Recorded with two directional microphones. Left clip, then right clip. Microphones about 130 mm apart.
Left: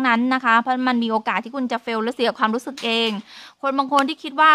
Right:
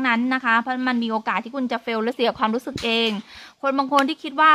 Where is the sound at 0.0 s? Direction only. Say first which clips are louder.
Left 2 dB; 85° left.